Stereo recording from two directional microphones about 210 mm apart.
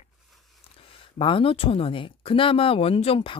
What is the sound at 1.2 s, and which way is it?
Speech, 25° left (ahead or behind).